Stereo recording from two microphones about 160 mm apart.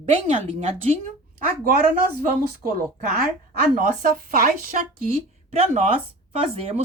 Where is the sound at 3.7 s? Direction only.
60° right (ahead or behind).